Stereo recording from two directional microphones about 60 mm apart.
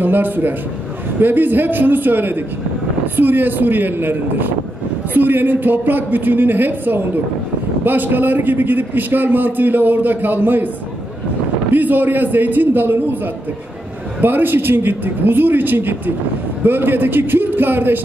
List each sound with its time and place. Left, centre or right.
0.0 s a man's voice: right
11.7 s a man's voice: right